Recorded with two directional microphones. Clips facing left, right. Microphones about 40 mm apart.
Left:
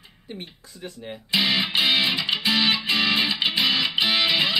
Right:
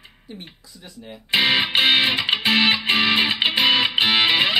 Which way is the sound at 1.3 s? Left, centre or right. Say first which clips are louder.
Right 4 dB; right.